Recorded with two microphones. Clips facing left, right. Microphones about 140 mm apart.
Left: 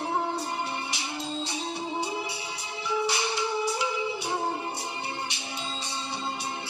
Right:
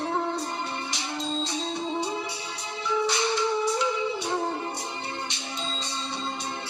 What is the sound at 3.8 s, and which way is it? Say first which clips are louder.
Music: right 3 dB; 5° left (ahead or behind).